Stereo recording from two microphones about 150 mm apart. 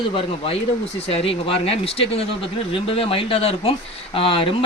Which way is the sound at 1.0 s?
40° left (ahead or behind).